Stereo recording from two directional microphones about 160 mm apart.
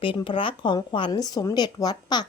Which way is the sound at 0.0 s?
30° left (ahead or behind).